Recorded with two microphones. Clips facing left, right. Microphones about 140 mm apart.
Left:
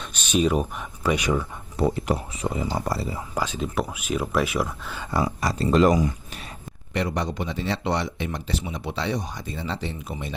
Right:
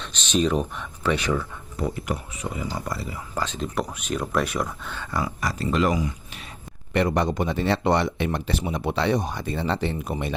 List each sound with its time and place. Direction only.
0.0 s speech: 10° left (ahead or behind)
1.7 s speech: 25° left (ahead or behind)
3.3 s speech: 10° left (ahead or behind)
5.1 s speech: 30° left (ahead or behind)
6.9 s speech: 55° right (ahead or behind)